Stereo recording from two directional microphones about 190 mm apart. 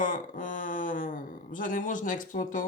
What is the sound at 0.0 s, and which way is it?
Speech, 45° left (ahead or behind).